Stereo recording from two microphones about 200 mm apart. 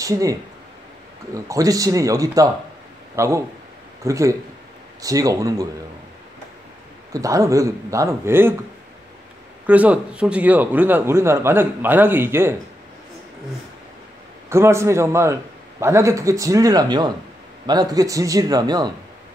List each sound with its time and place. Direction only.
0.0 s a man's voice: 15° right (ahead or behind)
7.1 s a man's voice: 15° right (ahead or behind)
9.7 s a man's voice: 5° right (ahead or behind)
14.5 s a man's voice: 15° right (ahead or behind)